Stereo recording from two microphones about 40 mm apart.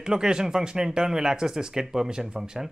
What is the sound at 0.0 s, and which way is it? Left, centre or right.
Speech, centre.